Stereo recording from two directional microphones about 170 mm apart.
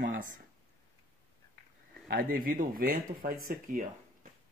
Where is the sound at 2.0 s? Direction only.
60° right (ahead or behind).